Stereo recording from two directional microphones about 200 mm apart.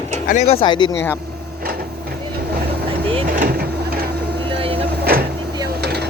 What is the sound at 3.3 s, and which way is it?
Printer, 50° right (ahead or behind).